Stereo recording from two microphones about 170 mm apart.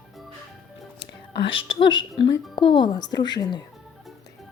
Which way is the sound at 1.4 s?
30° left (ahead or behind).